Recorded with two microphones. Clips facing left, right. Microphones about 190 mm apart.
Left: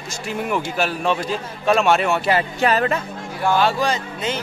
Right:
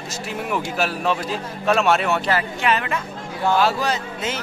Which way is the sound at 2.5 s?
40° left (ahead or behind).